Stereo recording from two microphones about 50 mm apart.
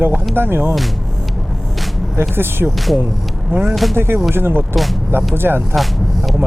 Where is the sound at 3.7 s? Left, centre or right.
Centre.